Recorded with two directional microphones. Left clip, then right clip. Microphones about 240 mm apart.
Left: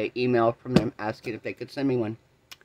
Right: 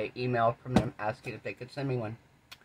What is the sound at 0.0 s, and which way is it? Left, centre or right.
Speech, left.